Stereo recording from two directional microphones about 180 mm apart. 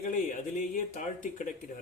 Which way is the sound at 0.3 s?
45° left (ahead or behind).